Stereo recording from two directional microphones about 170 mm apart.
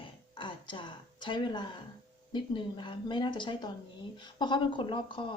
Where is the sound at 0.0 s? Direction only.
30° left (ahead or behind).